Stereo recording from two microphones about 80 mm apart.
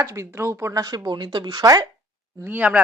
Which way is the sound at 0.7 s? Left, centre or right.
Right.